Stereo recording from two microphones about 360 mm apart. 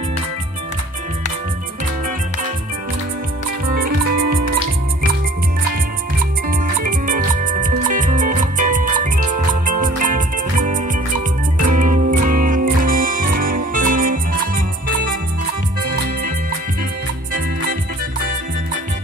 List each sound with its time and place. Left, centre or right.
6.8 s music: right